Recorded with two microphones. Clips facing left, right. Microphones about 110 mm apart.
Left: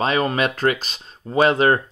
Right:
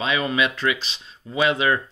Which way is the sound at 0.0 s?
45° left (ahead or behind).